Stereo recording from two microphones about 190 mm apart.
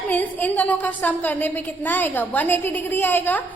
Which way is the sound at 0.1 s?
10° left (ahead or behind).